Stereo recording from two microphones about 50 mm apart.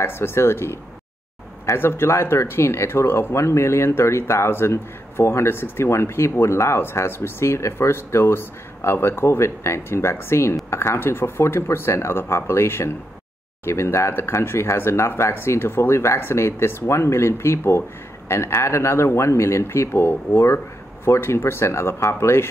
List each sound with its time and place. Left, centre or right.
0.0 s speech: left
1.8 s speech: left
14.1 s speech: left
15.3 s speech: left
20.3 s speech: left